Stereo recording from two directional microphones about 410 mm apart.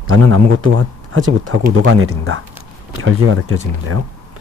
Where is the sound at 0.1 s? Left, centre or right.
Right.